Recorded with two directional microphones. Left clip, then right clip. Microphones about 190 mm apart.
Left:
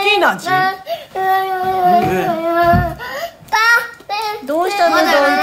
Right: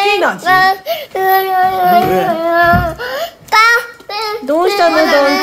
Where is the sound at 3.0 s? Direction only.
40° right (ahead or behind).